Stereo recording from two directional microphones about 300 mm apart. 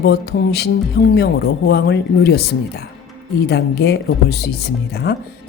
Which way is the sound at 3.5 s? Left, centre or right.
Left.